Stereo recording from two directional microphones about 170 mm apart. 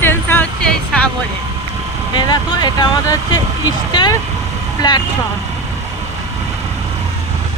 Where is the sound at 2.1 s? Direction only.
25° left (ahead or behind).